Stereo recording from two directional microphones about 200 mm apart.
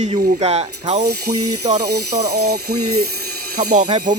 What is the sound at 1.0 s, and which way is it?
Speech, 50° right (ahead or behind).